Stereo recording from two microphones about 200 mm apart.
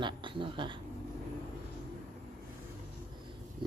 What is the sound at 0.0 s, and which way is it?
Speech, 25° right (ahead or behind).